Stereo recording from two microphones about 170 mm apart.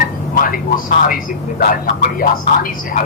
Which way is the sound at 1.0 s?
55° left (ahead or behind).